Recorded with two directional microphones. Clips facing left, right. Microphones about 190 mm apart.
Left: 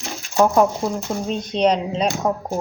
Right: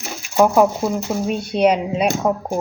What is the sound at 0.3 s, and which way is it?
Speech, 10° right (ahead or behind).